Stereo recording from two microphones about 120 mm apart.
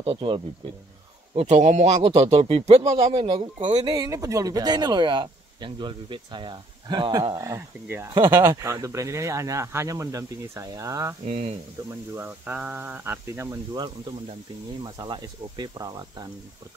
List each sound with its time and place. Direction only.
0.0 s a man's voice: 45° right (ahead or behind)
1.6 s speech: 80° right; by 11.1 s 25° right (ahead or behind)
11.2 s speech: 65° right (ahead or behind)
12.2 s speech: 15° right (ahead or behind)
13.7 s speech: 40° right (ahead or behind)